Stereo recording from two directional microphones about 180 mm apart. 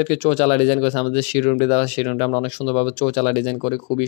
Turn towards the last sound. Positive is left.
turn(degrees=30)  # may be behind; listen again after turning